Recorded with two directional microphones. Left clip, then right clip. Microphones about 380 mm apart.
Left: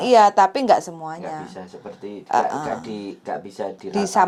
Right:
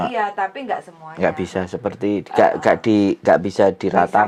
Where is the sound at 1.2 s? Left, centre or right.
Right.